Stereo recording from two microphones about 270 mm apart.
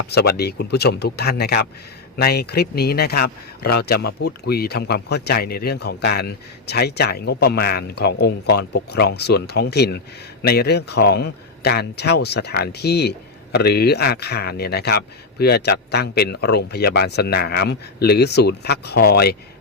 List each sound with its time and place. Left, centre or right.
0.1 s a man's voice: left